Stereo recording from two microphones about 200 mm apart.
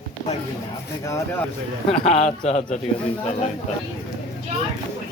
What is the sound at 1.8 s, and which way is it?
Speech, 30° left (ahead or behind).